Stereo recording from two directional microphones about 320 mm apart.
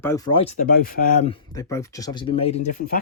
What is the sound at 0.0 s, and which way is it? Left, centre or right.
Speech, centre.